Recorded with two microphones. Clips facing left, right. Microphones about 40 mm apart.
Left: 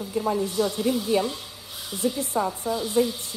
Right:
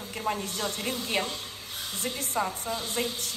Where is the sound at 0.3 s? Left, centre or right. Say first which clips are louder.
Left 6 dB; right.